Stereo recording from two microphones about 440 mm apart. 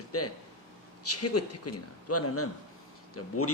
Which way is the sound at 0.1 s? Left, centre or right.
Left.